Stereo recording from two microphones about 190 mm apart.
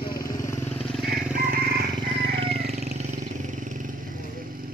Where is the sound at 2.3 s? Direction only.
30° right (ahead or behind).